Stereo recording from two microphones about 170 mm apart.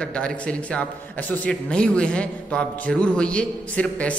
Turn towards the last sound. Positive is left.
turn(degrees=5)  # may be behind; listen again after turning